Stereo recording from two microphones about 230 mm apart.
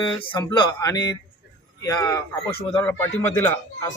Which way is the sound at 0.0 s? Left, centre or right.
Centre.